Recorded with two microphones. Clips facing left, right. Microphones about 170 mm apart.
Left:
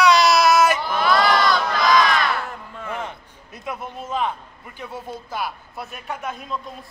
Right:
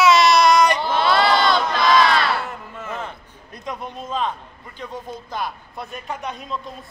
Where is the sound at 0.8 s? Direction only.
30° right (ahead or behind).